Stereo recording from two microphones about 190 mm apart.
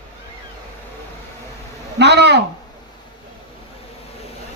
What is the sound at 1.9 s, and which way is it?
Speech, 65° right (ahead or behind).